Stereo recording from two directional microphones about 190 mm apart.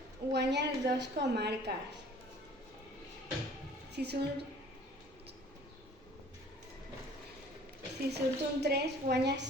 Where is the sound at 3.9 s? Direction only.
60° right (ahead or behind).